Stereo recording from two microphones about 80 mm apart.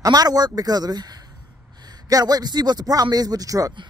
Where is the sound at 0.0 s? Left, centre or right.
Right.